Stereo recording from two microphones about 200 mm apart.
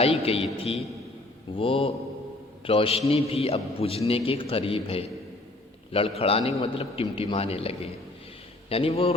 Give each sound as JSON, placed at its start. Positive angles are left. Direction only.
{"t": 0.0, "sound": "a man's voice", "side_deg": 30}